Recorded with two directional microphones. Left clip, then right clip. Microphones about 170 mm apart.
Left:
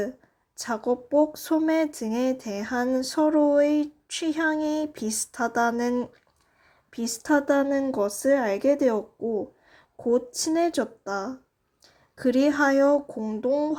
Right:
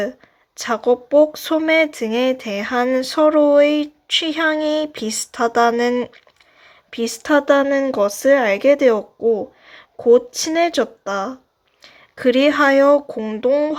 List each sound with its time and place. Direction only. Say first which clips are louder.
0.6 s speech: right 9 dB; 30° right (ahead or behind)
6.9 s speech: right 7 dB; 30° right (ahead or behind)
13.1 s speech: right 7 dB; 10° right (ahead or behind)